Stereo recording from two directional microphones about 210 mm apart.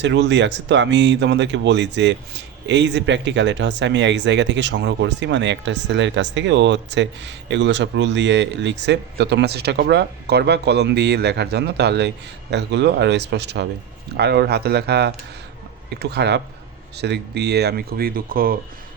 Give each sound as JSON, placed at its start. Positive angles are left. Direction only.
{"t": 0.0, "sound": "speech", "side_deg": -55}